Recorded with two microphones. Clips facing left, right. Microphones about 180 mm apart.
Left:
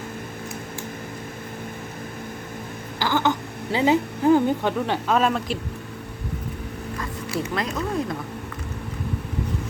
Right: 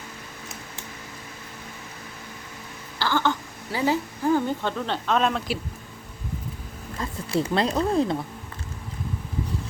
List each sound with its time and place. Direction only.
3.0 s a woman's voice: 15° left (ahead or behind)
7.5 s speech: 30° right (ahead or behind)